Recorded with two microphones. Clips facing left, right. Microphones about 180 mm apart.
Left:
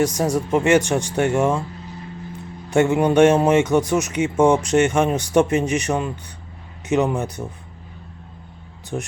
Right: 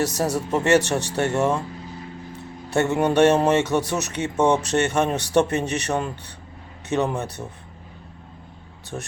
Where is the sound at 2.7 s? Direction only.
10° left (ahead or behind).